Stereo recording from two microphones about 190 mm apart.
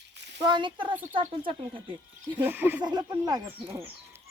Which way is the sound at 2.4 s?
10° right (ahead or behind).